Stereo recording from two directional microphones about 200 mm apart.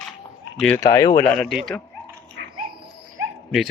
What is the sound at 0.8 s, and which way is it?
Speech, 20° left (ahead or behind).